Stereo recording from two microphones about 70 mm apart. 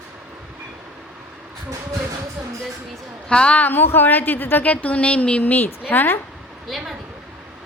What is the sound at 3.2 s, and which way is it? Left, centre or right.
A woman's voice, centre.